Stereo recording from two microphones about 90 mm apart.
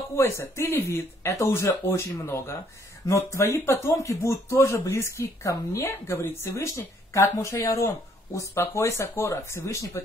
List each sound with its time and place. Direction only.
0.1 s speech: 30° left (ahead or behind)